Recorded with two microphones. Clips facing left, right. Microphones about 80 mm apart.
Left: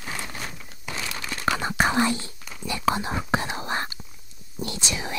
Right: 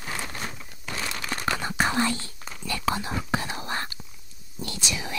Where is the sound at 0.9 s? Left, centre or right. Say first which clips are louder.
Even; centre.